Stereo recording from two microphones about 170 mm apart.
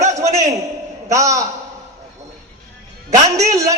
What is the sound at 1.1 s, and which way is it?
Speech, 20° right (ahead or behind).